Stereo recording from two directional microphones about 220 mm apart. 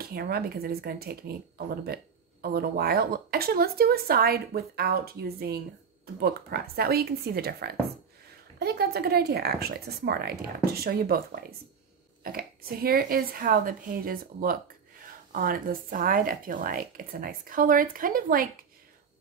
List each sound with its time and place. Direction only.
0.0 s speech: 45° right (ahead or behind)
2.4 s speech: 45° right (ahead or behind)